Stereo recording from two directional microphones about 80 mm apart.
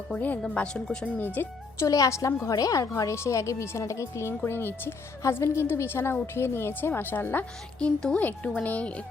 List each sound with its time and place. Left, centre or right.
0.2 s speech: centre
1.2 s a woman's voice: left
1.9 s a woman's voice: left
7.8 s speech: centre